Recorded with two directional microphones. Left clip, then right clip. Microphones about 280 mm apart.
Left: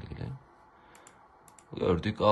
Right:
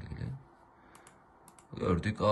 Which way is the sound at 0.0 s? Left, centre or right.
Centre.